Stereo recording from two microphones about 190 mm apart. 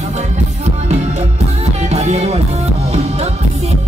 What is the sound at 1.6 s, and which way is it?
Music, 35° right (ahead or behind).